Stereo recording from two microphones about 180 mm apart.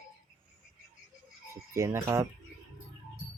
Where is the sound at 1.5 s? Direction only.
15° right (ahead or behind).